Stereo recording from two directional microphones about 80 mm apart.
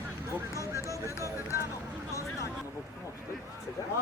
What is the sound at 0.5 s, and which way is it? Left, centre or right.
Vehicle, left.